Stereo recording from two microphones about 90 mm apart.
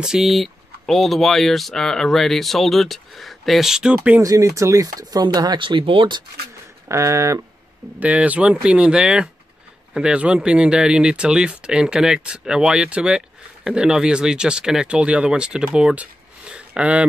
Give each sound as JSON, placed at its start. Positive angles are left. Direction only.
{"t": 0.0, "sound": "speech", "side_deg": -5}
{"t": 4.2, "sound": "speech", "side_deg": -35}
{"t": 6.9, "sound": "speech", "side_deg": -35}
{"t": 8.0, "sound": "speech", "side_deg": -15}